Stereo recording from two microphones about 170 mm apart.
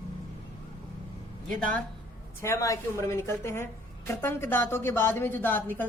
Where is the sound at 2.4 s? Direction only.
15° left (ahead or behind).